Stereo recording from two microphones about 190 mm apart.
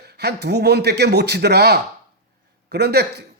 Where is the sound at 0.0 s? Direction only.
60° right (ahead or behind).